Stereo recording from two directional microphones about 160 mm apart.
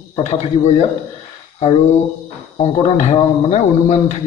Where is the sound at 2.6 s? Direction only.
45° left (ahead or behind).